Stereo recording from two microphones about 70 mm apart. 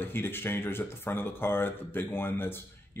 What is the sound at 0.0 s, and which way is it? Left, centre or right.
Speech, left.